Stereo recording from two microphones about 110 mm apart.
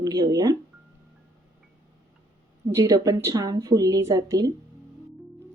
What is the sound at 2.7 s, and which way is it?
A woman's voice, 30° right (ahead or behind).